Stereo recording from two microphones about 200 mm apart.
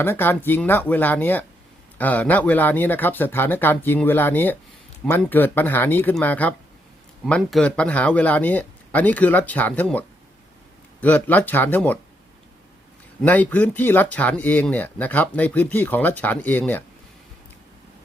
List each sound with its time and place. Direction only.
0.0 s speech: 10° left (ahead or behind)
11.0 s speech: 10° left (ahead or behind)
13.2 s speech: 10° left (ahead or behind)